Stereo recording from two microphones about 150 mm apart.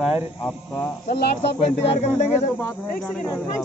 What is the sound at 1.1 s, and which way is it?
Speech, 90° left.